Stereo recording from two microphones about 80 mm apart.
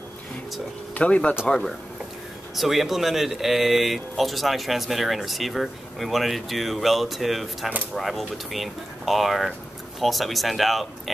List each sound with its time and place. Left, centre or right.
0.9 s speech: centre
2.5 s speech: centre